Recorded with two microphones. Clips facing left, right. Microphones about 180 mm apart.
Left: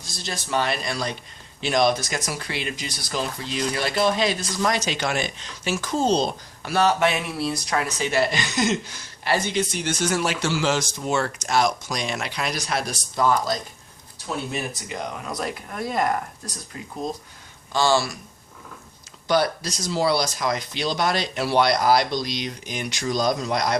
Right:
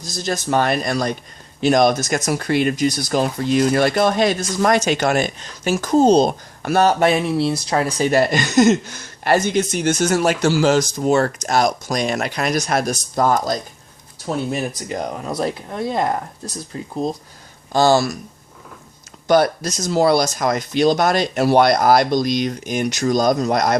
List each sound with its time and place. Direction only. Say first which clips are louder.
0.0 s speech: right 10 dB; 45° right (ahead or behind)
19.3 s speech: right 6 dB; 45° right (ahead or behind)